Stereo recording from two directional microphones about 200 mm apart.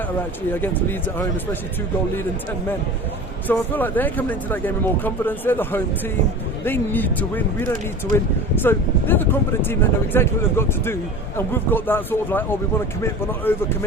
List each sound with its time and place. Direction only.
0.6 s speech: 10° left (ahead or behind)
3.4 s speech: 10° left (ahead or behind)
8.6 s speech: 10° left (ahead or behind)